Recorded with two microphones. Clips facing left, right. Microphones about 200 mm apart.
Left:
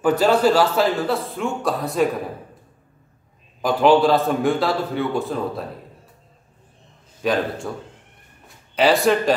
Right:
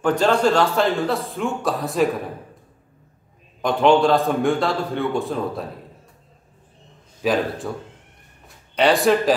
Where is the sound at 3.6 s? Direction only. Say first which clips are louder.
Left 1 dB; 5° left (ahead or behind).